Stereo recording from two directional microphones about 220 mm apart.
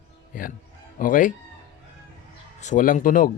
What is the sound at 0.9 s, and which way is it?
Speech, 40° left (ahead or behind).